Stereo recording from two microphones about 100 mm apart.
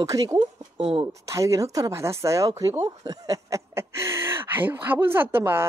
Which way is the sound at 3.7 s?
25° right (ahead or behind).